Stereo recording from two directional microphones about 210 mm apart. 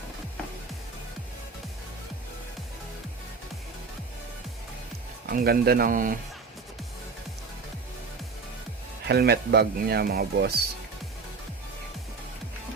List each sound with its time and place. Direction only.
5.2 s speech: 45° right (ahead or behind)
9.0 s speech: 50° right (ahead or behind)